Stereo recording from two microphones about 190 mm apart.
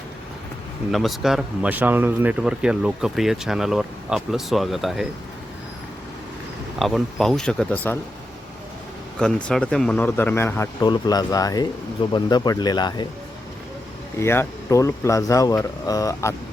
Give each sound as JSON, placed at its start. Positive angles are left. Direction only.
{"t": 0.9, "sound": "speech", "side_deg": 0}
{"t": 6.7, "sound": "speech", "side_deg": 0}
{"t": 9.1, "sound": "speech", "side_deg": 5}
{"t": 14.2, "sound": "speech", "side_deg": 15}